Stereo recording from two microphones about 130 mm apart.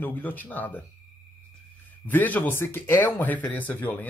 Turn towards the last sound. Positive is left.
turn(degrees=15)  # may be behind; listen again after turning